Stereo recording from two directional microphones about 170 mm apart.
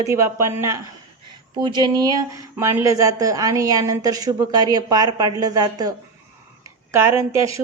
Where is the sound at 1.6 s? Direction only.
25° right (ahead or behind).